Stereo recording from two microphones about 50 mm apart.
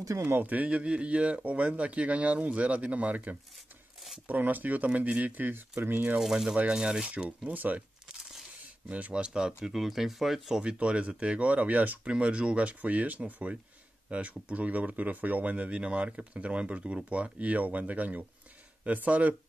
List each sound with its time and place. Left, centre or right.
0.4 s speech: right
6.1 s speech: centre
7.2 s speech: right
8.2 s a sound: centre
8.8 s speech: right; by 10.6 s centre
10.6 s speech: right
12.1 s speech: right